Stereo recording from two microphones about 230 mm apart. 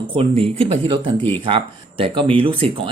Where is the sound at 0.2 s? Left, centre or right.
Right.